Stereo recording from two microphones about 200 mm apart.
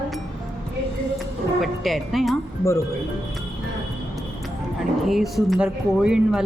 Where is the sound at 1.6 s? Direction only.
Centre (ahead or behind).